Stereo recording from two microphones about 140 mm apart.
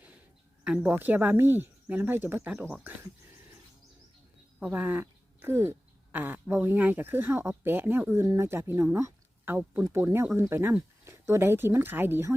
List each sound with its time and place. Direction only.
0.6 s speech: 10° right (ahead or behind)
4.6 s speech: 10° right (ahead or behind)